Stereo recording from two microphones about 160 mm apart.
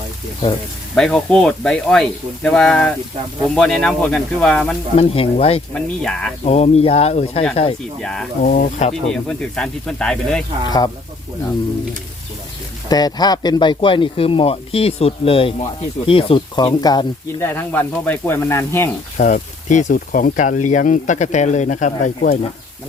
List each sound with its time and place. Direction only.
0.9 s speech: 5° left (ahead or behind)
4.9 s speech: 35° left (ahead or behind)
5.7 s speech: 5° left (ahead or behind)
6.4 s speech: 40° left (ahead or behind)
8.0 s speech: 5° left (ahead or behind)
8.4 s speech: 50° left (ahead or behind)
9.0 s speech: 5° left (ahead or behind)
10.7 s speech: 25° left (ahead or behind)
12.9 s speech: 25° left (ahead or behind)
17.4 s speech: 15° left (ahead or behind)
19.1 s speech: 50° left (ahead or behind)